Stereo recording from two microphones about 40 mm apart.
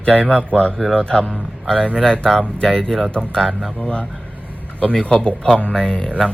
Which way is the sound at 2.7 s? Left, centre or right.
Centre.